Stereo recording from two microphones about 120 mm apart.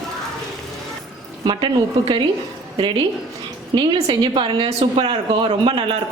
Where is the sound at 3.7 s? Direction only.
40° right (ahead or behind).